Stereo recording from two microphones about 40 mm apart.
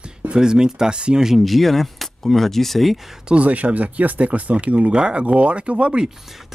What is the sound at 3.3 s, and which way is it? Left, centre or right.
Speech, right.